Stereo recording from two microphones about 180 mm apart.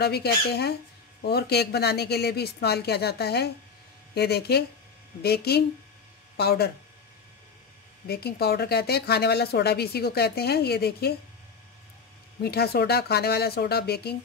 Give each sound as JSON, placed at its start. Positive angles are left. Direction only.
{"t": 0.0, "sound": "a woman's voice", "side_deg": 60}
{"t": 8.1, "sound": "a woman's voice", "side_deg": 60}
{"t": 12.4, "sound": "a woman's voice", "side_deg": 60}